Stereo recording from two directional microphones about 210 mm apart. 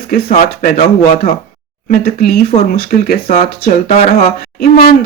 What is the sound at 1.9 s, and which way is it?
Speech, 45° left (ahead or behind).